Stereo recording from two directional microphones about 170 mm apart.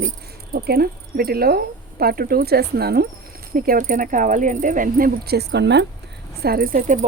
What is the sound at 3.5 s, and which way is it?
Speech, 55° right (ahead or behind).